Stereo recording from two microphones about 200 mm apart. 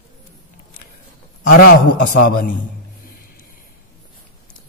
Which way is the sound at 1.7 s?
45° left (ahead or behind).